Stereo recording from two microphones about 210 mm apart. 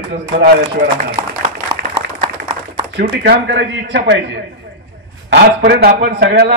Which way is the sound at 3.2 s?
55° right (ahead or behind).